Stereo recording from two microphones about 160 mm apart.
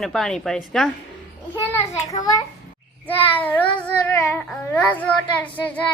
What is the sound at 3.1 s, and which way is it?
Speech, 10° left (ahead or behind).